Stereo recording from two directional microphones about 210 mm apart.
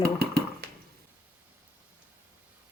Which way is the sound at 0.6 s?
50° right (ahead or behind).